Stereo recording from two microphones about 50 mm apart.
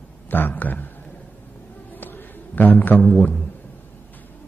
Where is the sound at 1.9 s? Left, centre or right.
Left.